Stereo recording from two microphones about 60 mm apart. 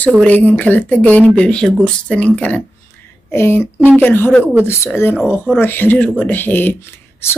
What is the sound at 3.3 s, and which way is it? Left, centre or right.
Speech, left.